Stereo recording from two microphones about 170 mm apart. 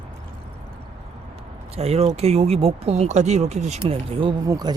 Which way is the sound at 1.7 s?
35° right (ahead or behind).